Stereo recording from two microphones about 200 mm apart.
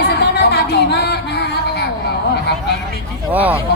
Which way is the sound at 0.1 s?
55° left (ahead or behind).